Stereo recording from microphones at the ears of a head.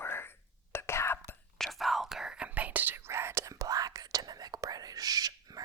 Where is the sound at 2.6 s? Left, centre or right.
Right.